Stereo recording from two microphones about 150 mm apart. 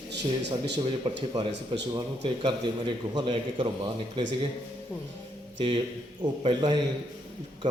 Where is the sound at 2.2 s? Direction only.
35° right (ahead or behind).